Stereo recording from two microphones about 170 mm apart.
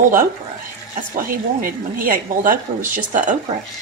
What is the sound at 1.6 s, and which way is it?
Speech, 55° right (ahead or behind).